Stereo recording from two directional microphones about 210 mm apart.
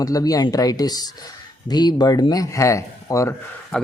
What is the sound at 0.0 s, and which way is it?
A man's voice, 15° left (ahead or behind).